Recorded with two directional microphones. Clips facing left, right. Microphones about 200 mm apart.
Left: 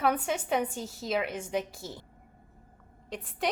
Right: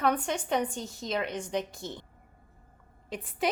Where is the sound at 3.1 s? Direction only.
Centre (ahead or behind).